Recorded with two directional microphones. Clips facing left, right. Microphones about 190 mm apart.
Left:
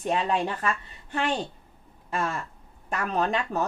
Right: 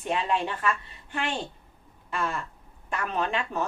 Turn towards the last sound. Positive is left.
turn(degrees=40)  # may be behind; listen again after turning